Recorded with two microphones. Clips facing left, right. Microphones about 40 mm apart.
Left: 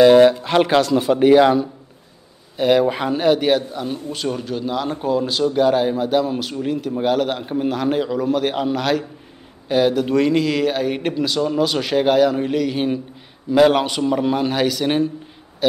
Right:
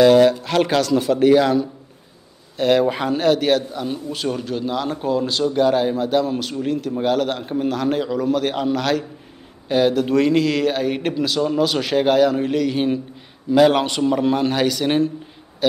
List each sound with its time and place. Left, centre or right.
0.0 s a man's voice: left; by 15.0 s centre